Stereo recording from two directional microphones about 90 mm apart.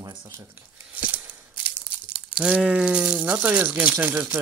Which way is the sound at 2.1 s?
10° right (ahead or behind).